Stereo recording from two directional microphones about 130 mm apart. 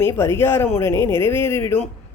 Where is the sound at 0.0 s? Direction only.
20° left (ahead or behind).